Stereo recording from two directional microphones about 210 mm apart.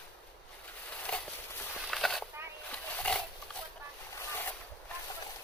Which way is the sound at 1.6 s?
Centre (ahead or behind).